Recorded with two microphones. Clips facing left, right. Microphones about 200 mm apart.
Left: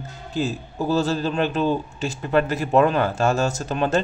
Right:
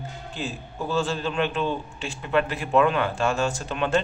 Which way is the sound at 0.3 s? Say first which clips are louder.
Left 9 dB; 40° left (ahead or behind).